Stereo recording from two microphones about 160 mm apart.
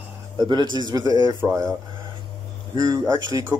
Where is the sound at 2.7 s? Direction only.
25° right (ahead or behind).